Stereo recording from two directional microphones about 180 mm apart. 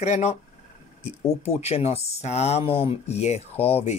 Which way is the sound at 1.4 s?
35° left (ahead or behind).